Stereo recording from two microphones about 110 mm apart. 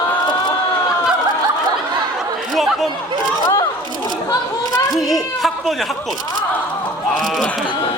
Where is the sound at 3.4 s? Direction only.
40° left (ahead or behind).